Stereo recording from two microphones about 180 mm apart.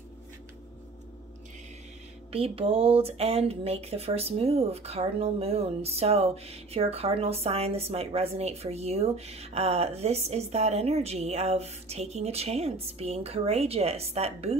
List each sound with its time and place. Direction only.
2.3 s speech: 30° right (ahead or behind)